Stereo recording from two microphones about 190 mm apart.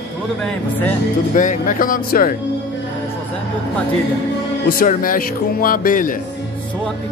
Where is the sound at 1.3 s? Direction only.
45° left (ahead or behind).